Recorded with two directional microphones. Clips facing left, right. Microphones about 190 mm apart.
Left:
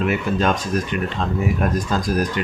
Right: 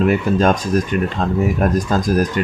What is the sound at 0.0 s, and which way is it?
Speech, 40° right (ahead or behind).